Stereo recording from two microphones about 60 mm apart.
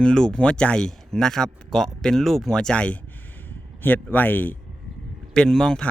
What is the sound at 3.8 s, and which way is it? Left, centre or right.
Speech, left.